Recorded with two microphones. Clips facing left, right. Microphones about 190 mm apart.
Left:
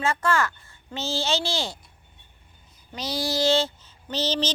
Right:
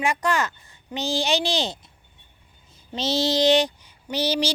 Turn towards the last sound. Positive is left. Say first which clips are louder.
# right 2 dB
turn(degrees=-10)  # may be behind; listen again after turning